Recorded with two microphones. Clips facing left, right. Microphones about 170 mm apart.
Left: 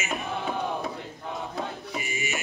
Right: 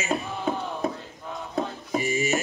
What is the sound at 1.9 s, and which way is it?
Music, 35° right (ahead or behind).